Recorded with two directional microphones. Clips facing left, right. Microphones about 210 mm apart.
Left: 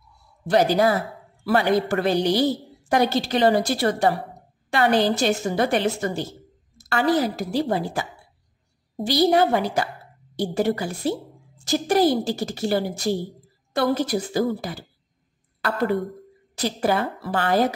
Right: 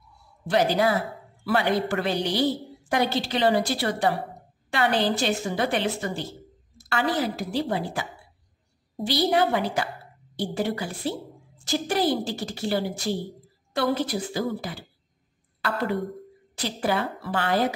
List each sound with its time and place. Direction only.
0.5 s a woman's voice: 40° left (ahead or behind)
16.5 s a woman's voice: 40° left (ahead or behind)